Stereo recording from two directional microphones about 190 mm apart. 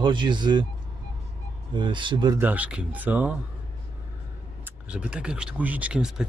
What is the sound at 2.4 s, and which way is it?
Speech, 10° right (ahead or behind).